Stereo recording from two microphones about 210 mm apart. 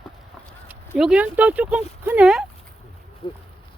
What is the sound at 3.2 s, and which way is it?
Speech, 20° left (ahead or behind).